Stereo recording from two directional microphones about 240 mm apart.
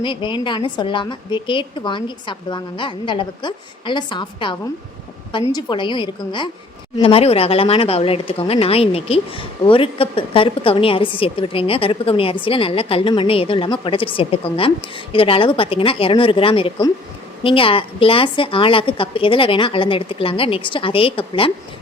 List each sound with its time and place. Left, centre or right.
0.0 s speech: centre